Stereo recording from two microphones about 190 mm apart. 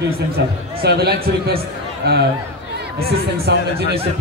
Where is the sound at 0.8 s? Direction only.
55° right (ahead or behind).